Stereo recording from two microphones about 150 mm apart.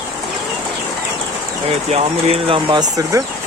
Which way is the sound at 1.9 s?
40° right (ahead or behind).